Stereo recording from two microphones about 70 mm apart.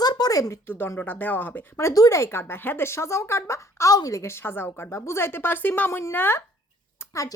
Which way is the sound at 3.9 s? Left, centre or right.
Left.